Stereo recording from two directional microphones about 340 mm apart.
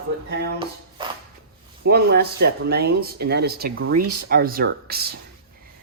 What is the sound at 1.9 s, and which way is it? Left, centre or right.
Speech, right.